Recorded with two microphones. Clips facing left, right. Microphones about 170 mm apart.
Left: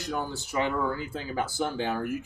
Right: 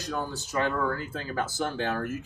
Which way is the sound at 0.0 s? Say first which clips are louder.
Left 1 dB; 15° left (ahead or behind).